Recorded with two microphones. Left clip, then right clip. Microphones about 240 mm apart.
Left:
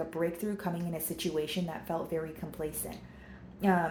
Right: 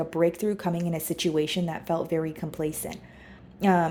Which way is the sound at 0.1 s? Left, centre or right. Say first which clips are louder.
Right 9 dB; right.